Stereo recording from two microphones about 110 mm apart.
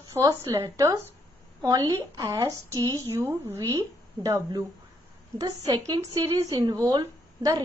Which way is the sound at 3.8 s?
35° right (ahead or behind).